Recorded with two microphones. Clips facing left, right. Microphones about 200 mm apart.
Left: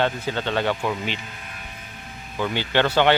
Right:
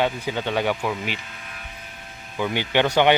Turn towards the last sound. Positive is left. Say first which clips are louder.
# right 1 dB
turn(degrees=-15)  # may be behind; listen again after turning